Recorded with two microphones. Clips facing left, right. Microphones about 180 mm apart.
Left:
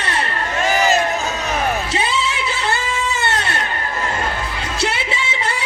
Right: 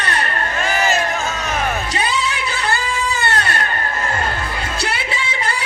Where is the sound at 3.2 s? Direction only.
25° left (ahead or behind).